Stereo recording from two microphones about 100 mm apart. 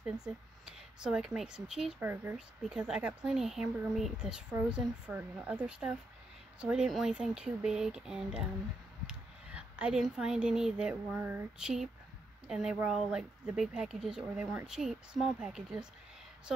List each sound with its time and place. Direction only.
0.0 s speech: 5° right (ahead or behind)
2.0 s speech: 20° right (ahead or behind)
2.3 s speech: 5° right (ahead or behind)
11.5 s speech: 5° right (ahead or behind)